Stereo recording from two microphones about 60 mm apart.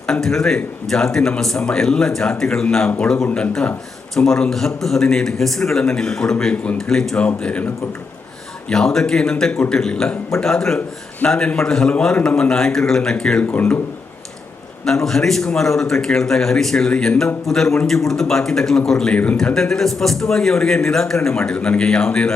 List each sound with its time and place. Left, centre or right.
0.1 s a man's voice: centre
7.2 s speech: left
8.7 s a man's voice: centre
13.4 s speech: left
14.8 s a man's voice: centre
19.1 s speech: left
19.5 s a man's voice: centre